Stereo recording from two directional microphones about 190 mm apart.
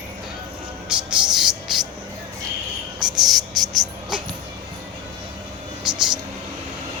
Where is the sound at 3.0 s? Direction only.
Centre (ahead or behind).